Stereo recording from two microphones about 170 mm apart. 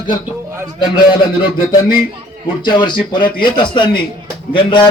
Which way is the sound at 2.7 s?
25° left (ahead or behind).